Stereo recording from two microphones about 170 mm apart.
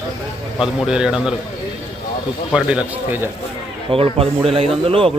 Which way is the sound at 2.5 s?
5° right (ahead or behind).